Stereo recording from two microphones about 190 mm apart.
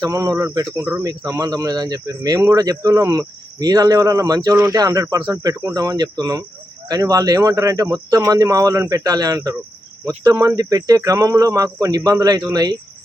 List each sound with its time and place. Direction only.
0.0 s speech: 20° right (ahead or behind)